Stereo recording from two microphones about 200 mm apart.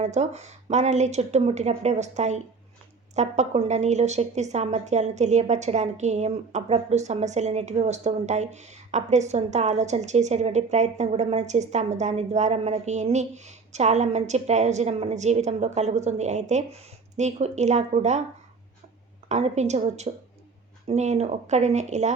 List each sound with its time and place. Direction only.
0.0 s a woman's voice: 35° right (ahead or behind)
19.3 s a woman's voice: 35° right (ahead or behind)